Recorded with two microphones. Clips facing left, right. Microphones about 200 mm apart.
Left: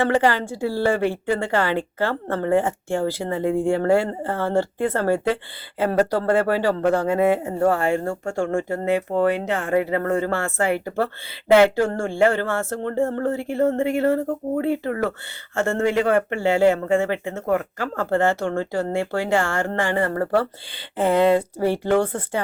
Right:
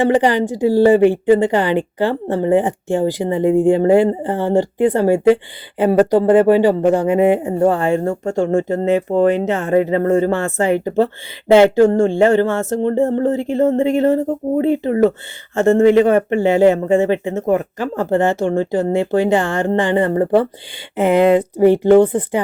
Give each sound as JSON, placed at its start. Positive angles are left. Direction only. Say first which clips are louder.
{"t": 0.0, "sound": "a woman's voice", "louder": "right 5 dB", "side_deg": -15}